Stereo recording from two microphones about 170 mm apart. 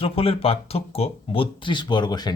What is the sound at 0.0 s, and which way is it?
Speech, 35° left (ahead or behind).